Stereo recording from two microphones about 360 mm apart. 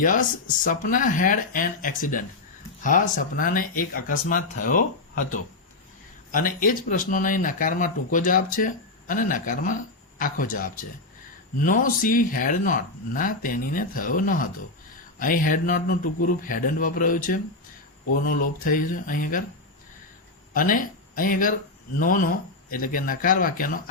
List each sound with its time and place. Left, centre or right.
0.0 s speech: left
20.5 s speech: left